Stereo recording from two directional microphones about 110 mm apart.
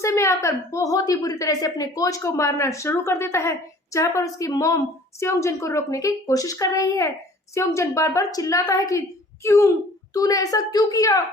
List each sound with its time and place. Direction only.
0.0 s a woman's voice: 25° left (ahead or behind)